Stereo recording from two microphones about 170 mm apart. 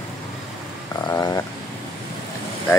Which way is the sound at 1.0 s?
25° left (ahead or behind).